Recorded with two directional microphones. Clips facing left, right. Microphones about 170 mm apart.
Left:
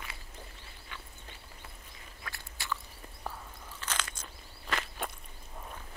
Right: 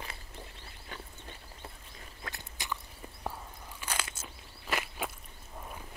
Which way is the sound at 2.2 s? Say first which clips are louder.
Right 2 dB; 20° right (ahead or behind).